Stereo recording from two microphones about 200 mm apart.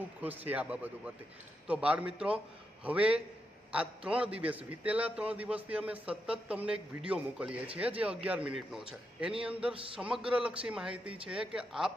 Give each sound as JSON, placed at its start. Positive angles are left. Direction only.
{"t": 0.2, "sound": "a man's voice", "side_deg": -10}